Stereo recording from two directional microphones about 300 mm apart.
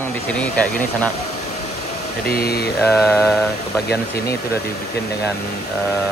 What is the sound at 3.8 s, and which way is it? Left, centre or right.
Mantra, left.